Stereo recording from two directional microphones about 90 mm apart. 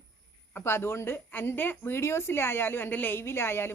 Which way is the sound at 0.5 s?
25° left (ahead or behind).